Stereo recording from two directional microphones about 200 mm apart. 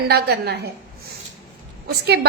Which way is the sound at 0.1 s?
55° right (ahead or behind).